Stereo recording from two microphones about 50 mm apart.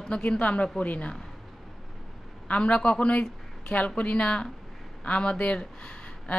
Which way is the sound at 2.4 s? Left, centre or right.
Left.